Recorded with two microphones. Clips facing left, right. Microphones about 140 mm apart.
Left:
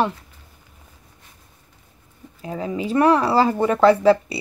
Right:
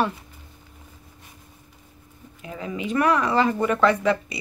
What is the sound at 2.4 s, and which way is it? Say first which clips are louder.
Speech: left 5 dB; 35° left (ahead or behind).